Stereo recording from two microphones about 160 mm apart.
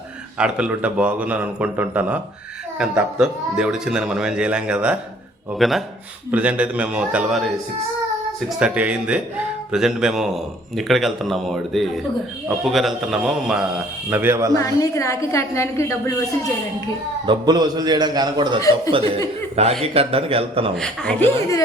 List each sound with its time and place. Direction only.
0.3 s a man's voice: 5° right (ahead or behind)
8.5 s a man's voice: 5° right (ahead or behind)
14.1 s a man's voice: 15° right (ahead or behind)
14.5 s a woman's voice: 20° left (ahead or behind)
17.2 s a man's voice: 25° right (ahead or behind)
20.7 s speech: 5° left (ahead or behind)